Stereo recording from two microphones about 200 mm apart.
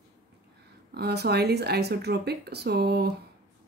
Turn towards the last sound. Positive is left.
turn(degrees=-55)  # may be behind; listen again after turning